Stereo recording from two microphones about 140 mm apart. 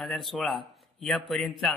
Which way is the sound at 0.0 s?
Centre (ahead or behind).